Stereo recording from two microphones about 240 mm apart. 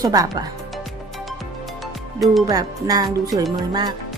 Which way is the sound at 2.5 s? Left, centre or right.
Centre.